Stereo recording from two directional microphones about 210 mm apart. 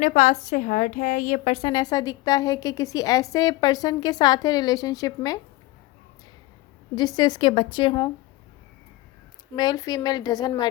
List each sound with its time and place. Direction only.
0.0 s a woman's voice: 35° left (ahead or behind); by 5.4 s 15° left (ahead or behind)
7.2 s speech: 20° left (ahead or behind)
9.6 s speech: 20° left (ahead or behind)